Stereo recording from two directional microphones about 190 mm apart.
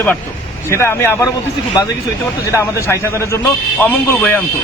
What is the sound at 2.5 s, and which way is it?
A man's voice, 15° left (ahead or behind).